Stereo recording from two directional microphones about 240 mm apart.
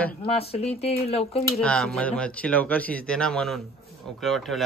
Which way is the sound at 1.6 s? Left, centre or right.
Centre.